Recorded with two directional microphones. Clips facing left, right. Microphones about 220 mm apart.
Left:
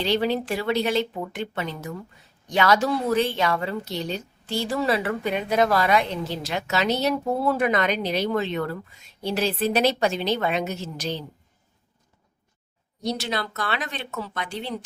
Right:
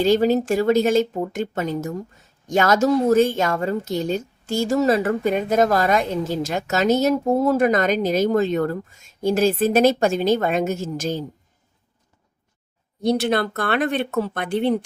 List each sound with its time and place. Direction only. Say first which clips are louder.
0.0 s a woman's voice: right 6 dB; 45° right (ahead or behind)
13.0 s speech: right 8 dB; 55° right (ahead or behind)